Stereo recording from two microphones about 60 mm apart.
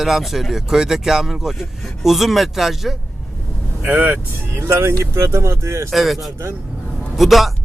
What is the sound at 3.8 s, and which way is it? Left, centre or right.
Speech, right.